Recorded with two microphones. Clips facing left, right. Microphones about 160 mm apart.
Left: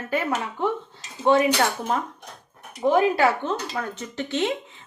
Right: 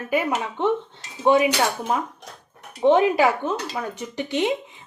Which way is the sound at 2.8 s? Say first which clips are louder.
Right 2 dB; 20° right (ahead or behind).